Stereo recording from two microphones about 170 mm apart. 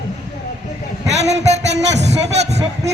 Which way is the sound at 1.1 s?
40° right (ahead or behind).